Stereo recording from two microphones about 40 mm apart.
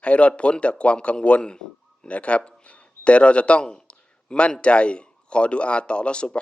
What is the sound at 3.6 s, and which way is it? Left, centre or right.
Speech, left.